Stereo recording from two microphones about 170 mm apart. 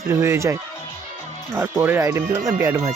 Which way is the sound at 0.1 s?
15° right (ahead or behind).